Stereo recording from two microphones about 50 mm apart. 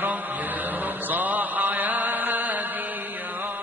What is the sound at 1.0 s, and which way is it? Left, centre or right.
Mantra, right.